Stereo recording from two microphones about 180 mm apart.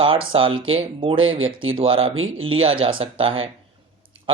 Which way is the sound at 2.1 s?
90° right.